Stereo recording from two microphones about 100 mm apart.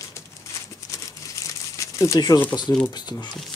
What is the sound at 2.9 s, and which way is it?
Speech, 45° left (ahead or behind).